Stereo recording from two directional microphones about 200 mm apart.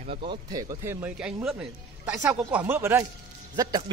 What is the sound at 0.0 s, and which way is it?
A man's voice, 25° right (ahead or behind).